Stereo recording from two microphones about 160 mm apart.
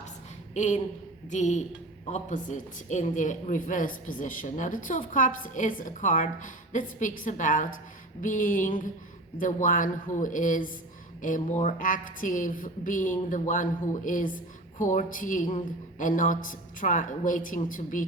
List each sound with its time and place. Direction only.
0.5 s a woman's voice: 45° left (ahead or behind)